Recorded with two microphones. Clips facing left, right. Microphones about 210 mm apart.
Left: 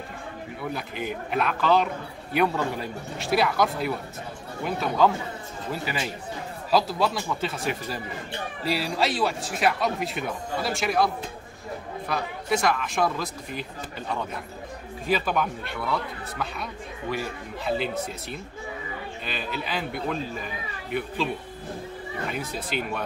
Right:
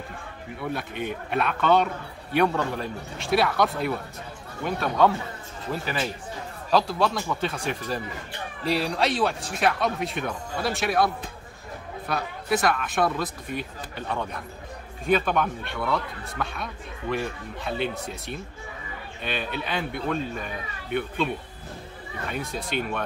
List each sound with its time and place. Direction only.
0.6 s speech: centre (ahead or behind)
6.7 s speech: 5° left (ahead or behind)
12.1 s speech: centre (ahead or behind)
15.0 s speech: 5° left (ahead or behind)
22.3 s speech: centre (ahead or behind)